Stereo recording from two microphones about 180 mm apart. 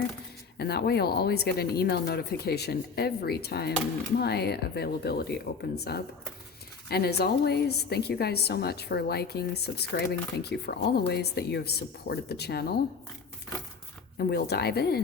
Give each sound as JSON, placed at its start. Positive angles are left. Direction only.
{"t": 0.5, "sound": "speech", "side_deg": 60}
{"t": 14.2, "sound": "speech", "side_deg": 65}